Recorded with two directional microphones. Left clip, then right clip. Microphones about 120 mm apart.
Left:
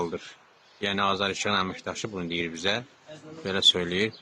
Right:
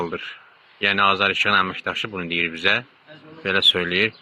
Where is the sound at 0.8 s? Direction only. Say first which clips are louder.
Right 8 dB; 15° right (ahead or behind).